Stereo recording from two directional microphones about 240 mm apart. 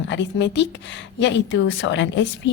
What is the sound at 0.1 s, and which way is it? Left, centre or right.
Speech, left.